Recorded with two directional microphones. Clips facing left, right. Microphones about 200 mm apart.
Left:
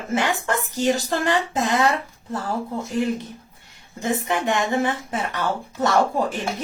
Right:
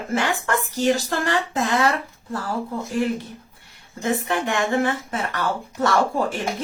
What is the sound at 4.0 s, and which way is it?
Speech, 20° left (ahead or behind).